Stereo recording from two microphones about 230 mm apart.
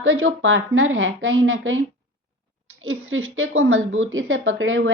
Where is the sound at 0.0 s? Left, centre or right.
Right.